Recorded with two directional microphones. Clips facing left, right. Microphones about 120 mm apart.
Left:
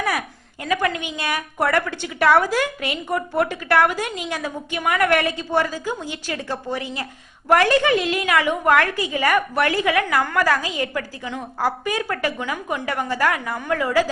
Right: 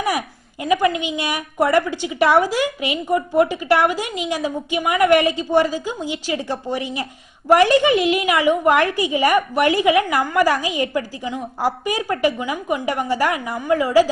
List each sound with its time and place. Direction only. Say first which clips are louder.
0.6 s a woman's voice: right 5 dB; 15° right (ahead or behind)